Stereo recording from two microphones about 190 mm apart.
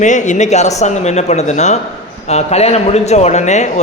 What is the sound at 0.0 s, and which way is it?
A man's voice, 40° left (ahead or behind).